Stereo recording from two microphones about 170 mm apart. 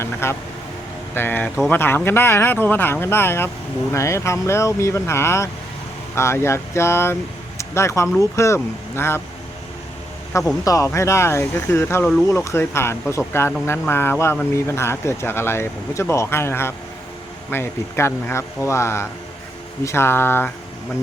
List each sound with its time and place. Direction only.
0.0 s speech: 15° left (ahead or behind)
10.6 s speech: 20° left (ahead or behind)